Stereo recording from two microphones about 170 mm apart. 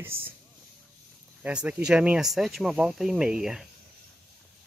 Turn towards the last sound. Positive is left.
turn(degrees=-5)  # may be behind; listen again after turning